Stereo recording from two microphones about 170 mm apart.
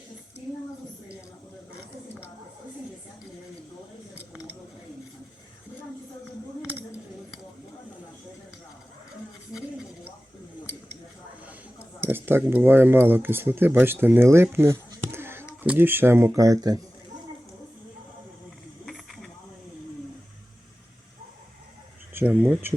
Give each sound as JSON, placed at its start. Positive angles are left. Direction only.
{"t": 9.5, "sound": "a sound", "side_deg": 0}
{"t": 11.9, "sound": "speech", "side_deg": -10}
{"t": 18.9, "sound": "snake", "side_deg": 0}
{"t": 22.1, "sound": "speech", "side_deg": -10}